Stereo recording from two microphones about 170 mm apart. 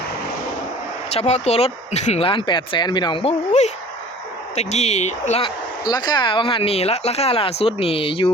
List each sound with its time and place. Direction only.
1.1 s speech: 40° left (ahead or behind)
5.8 s speech: 25° left (ahead or behind)